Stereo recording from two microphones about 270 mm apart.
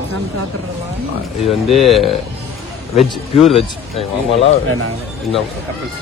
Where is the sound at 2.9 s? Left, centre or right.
Left.